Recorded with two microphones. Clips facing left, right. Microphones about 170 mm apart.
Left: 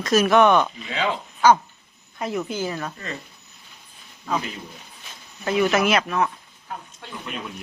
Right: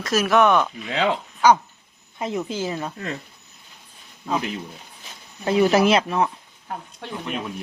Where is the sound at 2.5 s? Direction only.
25° right (ahead or behind).